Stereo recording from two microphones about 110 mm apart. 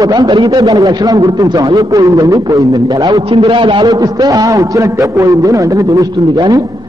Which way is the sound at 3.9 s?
35° right (ahead or behind).